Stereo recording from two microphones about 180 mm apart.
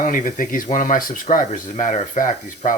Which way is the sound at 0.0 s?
50° left (ahead or behind).